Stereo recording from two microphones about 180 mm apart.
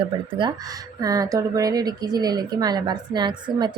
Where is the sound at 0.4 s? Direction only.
25° right (ahead or behind).